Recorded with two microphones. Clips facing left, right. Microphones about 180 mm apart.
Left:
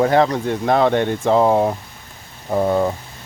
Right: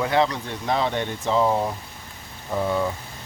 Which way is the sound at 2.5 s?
50° left (ahead or behind).